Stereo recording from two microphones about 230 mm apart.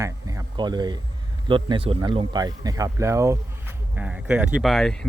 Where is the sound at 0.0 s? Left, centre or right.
Centre.